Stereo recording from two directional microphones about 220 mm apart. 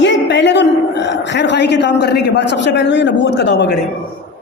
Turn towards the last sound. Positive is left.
turn(degrees=50)  # may be behind; listen again after turning